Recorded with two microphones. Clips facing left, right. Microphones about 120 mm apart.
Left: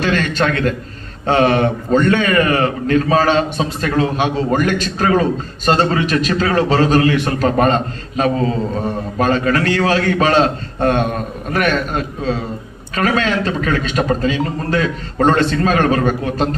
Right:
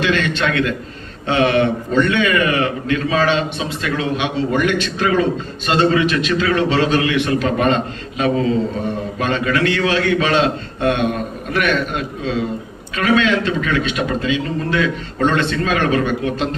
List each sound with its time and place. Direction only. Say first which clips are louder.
0.0 s a man's voice: left 1 dB; 40° left (ahead or behind)